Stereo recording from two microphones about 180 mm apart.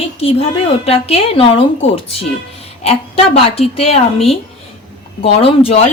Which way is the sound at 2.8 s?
35° left (ahead or behind).